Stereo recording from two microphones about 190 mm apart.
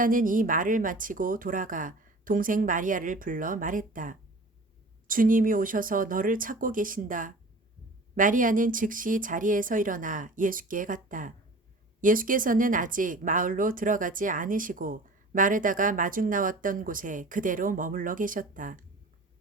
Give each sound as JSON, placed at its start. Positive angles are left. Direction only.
{"t": 0.0, "sound": "speech", "side_deg": -45}